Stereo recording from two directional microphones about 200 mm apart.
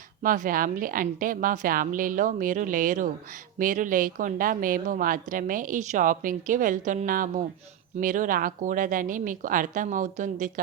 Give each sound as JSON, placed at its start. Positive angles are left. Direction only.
{"t": 0.2, "sound": "a woman's voice", "side_deg": -45}